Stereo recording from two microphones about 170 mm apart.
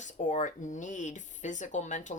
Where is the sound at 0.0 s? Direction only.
45° left (ahead or behind).